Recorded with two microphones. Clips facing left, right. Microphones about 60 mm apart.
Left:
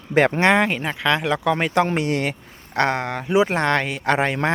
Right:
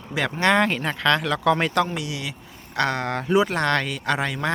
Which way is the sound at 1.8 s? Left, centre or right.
Left.